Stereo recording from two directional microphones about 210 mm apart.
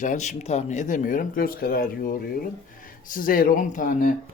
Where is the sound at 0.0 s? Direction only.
35° left (ahead or behind).